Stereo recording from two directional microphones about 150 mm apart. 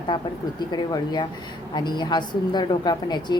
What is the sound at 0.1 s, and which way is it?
A woman's voice, 30° left (ahead or behind).